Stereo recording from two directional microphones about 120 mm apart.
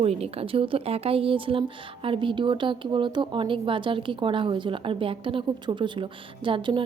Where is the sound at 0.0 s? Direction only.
60° right (ahead or behind).